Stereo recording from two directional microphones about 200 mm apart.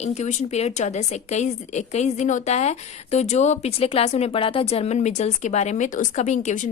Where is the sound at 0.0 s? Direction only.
35° left (ahead or behind).